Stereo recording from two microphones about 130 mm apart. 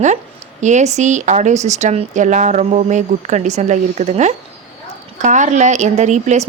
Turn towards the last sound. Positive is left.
turn(degrees=-65)  # may be behind; listen again after turning